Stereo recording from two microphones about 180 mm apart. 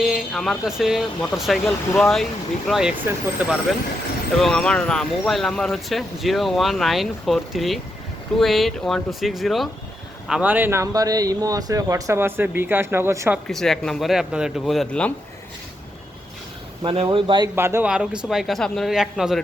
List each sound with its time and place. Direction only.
0.0 s speech: centre (ahead or behind)
4.4 s speech: centre (ahead or behind); by 13.4 s 15° right (ahead or behind)
13.5 s speech: centre (ahead or behind)
16.8 s speech: 30° right (ahead or behind)
17.5 s speech: 15° right (ahead or behind)